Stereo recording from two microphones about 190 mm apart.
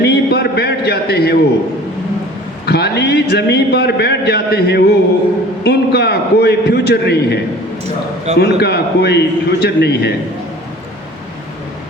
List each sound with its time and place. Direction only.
0.0 s a sound: 60° left (ahead or behind)
2.6 s a man's voice: 60° left (ahead or behind)
8.4 s a man's voice: 60° left (ahead or behind)